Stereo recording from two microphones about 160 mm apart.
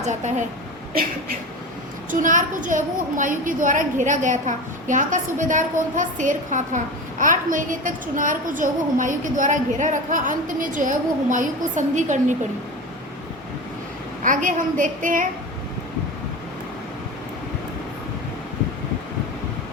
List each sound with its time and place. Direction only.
0.0 s a woman's voice: 45° right (ahead or behind)
2.0 s a woman's voice: 55° right (ahead or behind)
14.3 s a woman's voice: 55° right (ahead or behind)